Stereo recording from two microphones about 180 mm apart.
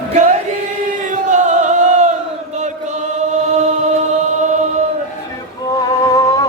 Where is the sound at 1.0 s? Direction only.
45° right (ahead or behind).